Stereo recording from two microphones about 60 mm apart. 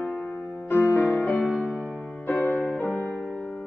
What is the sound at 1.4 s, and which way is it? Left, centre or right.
Music, centre.